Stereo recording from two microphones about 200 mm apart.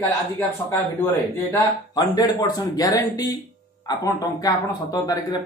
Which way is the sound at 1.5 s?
20° left (ahead or behind).